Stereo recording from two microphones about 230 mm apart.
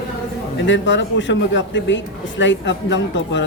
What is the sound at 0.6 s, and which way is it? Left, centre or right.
A man's voice, left.